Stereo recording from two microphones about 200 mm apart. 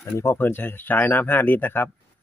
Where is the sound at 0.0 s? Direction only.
15° left (ahead or behind).